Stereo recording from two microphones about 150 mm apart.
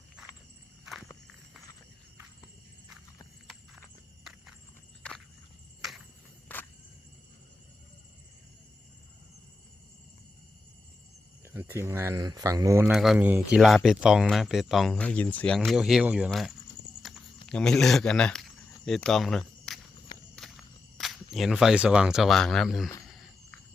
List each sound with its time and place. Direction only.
4.2 s horse: centre (ahead or behind)
5.0 s walk: 5° left (ahead or behind)
6.5 s cricket: 10° left (ahead or behind)
11.4 s speech: 15° right (ahead or behind)
12.9 s speech: centre (ahead or behind)
17.0 s a sound: centre (ahead or behind)
20.3 s walk: 5° left (ahead or behind)
21.3 s speech: centre (ahead or behind)
23.0 s a sound: centre (ahead or behind)